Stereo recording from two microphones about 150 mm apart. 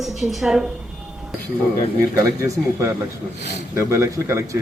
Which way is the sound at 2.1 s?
20° right (ahead or behind).